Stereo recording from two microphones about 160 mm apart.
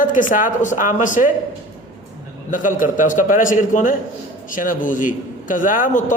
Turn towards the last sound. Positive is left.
turn(degrees=55)  # may be behind; listen again after turning